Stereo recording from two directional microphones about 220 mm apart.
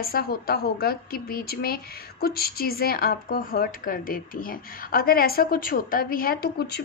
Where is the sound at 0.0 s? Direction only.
45° left (ahead or behind).